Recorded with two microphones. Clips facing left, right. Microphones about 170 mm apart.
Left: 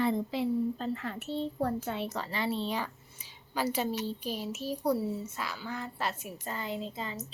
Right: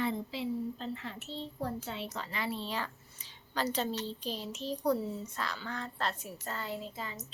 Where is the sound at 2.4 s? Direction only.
25° left (ahead or behind).